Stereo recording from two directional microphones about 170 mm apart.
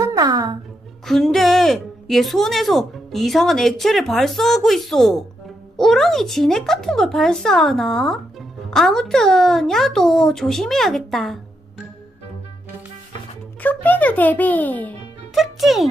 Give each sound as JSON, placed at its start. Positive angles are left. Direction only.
{"t": 0.0, "sound": "a sound", "side_deg": -20}
{"t": 1.0, "sound": "speech", "side_deg": 0}
{"t": 13.6, "sound": "a child's voice", "side_deg": 10}
{"t": 15.3, "sound": "a child's voice", "side_deg": 0}